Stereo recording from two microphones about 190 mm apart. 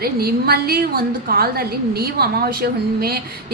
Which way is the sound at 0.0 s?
55° right (ahead or behind).